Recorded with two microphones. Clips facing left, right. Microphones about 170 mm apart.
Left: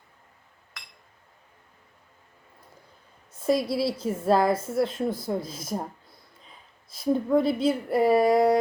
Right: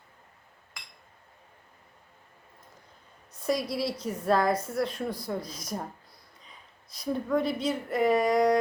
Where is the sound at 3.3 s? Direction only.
25° left (ahead or behind).